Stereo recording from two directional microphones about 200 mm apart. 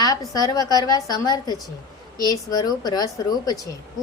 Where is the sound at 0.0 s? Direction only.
20° left (ahead or behind).